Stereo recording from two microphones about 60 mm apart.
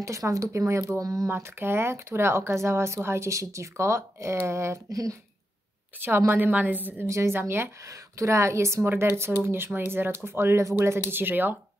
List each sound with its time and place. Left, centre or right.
0.0 s speech: right
0.9 s speech: right
1.3 s speech: right
5.9 s a woman's voice: right
7.1 s speech: right
7.3 s speech: right
7.9 s speech: right
8.8 s a woman's voice: right